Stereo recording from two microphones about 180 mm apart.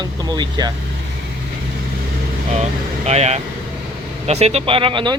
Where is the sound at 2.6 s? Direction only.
35° right (ahead or behind).